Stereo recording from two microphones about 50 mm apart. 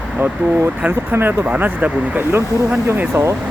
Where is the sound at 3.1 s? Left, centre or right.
Right.